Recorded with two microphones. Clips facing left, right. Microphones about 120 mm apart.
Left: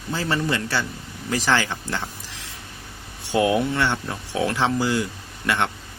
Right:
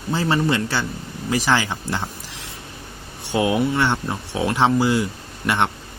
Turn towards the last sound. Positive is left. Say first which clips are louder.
# right 3 dB
turn(degrees=-20)  # may be behind; listen again after turning